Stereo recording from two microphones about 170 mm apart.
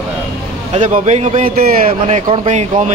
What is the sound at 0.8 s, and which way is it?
A man's voice, 45° right (ahead or behind).